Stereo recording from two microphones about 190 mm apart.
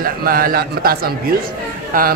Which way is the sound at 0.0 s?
50° right (ahead or behind).